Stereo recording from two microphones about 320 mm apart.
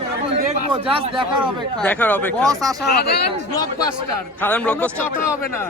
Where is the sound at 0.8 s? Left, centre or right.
Centre.